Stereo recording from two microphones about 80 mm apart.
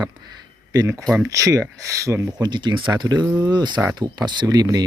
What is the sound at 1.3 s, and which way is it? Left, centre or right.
Speech, right.